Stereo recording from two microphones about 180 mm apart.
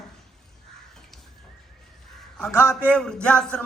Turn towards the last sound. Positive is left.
turn(degrees=5)  # may be behind; listen again after turning